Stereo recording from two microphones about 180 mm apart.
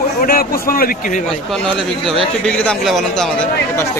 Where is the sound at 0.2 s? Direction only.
55° left (ahead or behind).